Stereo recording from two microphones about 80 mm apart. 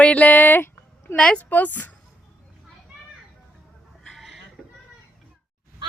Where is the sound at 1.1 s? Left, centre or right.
Centre.